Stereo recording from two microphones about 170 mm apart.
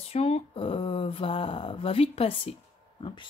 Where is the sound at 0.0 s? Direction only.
35° left (ahead or behind).